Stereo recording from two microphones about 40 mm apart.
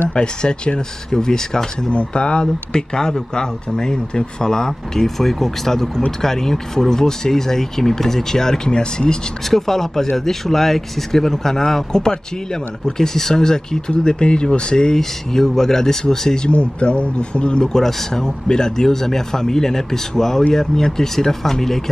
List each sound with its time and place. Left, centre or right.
0.1 s speech: left
2.0 s speech: left
9.6 s speech: centre
16.4 s speech: left
17.7 s speech: centre